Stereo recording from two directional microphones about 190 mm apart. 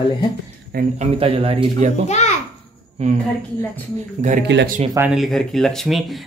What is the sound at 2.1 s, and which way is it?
Babbling, 35° left (ahead or behind).